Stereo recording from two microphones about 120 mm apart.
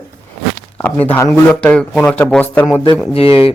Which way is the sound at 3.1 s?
55° left (ahead or behind).